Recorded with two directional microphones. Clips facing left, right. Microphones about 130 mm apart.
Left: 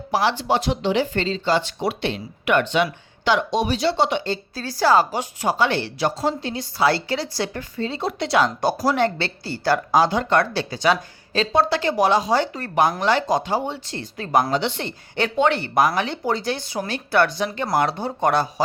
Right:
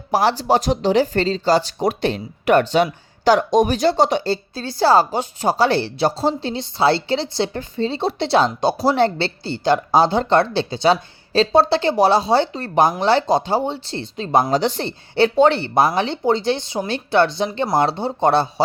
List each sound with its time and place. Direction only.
0.1 s speech: 40° right (ahead or behind)